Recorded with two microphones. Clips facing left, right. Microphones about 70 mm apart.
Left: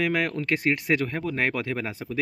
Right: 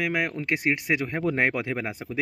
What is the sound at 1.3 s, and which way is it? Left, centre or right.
Speech, right.